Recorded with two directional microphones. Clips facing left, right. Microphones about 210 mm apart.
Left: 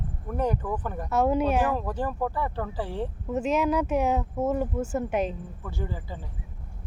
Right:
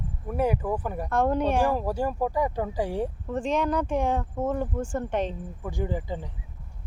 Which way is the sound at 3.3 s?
5° left (ahead or behind).